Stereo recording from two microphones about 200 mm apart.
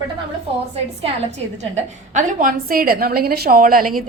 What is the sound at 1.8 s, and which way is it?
A woman's voice, 40° right (ahead or behind).